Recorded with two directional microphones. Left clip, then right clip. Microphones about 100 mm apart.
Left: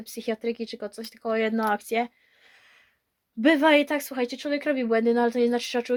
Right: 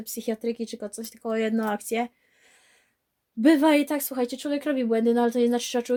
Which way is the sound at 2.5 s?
35° right (ahead or behind).